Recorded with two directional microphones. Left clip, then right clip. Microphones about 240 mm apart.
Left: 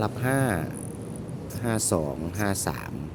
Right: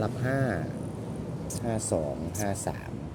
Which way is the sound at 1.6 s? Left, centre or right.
Left.